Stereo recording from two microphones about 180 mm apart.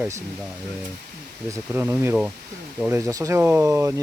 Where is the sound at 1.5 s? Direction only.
15° right (ahead or behind).